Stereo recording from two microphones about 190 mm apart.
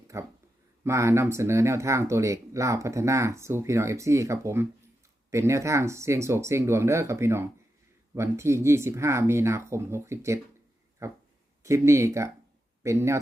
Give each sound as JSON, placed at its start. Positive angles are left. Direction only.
{"t": 0.1, "sound": "speech", "side_deg": -15}